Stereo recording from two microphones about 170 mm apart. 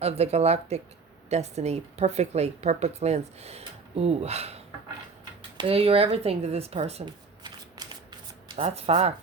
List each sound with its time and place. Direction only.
0.0 s speech: 40° right (ahead or behind)
5.5 s speech: 35° right (ahead or behind)
7.8 s shuffling cards: 20° right (ahead or behind)
8.4 s speech: 35° right (ahead or behind)